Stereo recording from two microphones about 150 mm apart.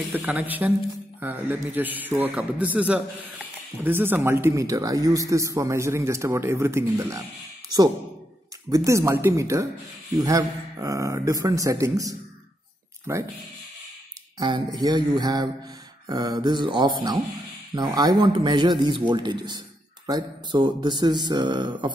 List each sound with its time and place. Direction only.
0.1 s a man's voice: 10° right (ahead or behind)
8.6 s a man's voice: 20° right (ahead or behind)
14.4 s a man's voice: 30° right (ahead or behind)